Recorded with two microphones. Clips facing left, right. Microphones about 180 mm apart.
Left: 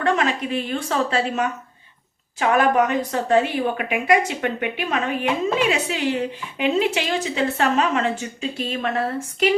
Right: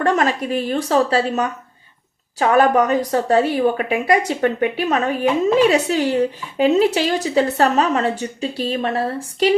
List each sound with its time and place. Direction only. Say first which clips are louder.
0.0 s a woman's voice: right 3 dB; 45° right (ahead or behind)